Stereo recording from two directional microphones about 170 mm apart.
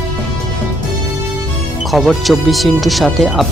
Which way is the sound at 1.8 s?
Centre (ahead or behind).